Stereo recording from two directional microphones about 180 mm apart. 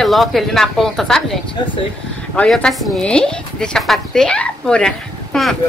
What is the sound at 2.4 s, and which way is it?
Speech, 5° left (ahead or behind).